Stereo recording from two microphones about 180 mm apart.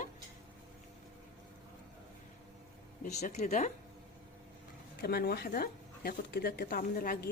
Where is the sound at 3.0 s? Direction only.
45° left (ahead or behind).